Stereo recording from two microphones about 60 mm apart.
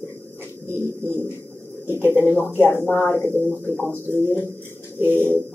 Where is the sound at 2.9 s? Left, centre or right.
Left.